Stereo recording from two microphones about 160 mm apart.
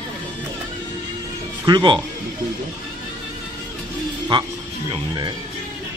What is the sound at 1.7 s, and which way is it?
Speech, 30° right (ahead or behind).